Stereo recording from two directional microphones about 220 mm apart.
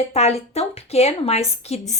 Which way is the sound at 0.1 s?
30° left (ahead or behind).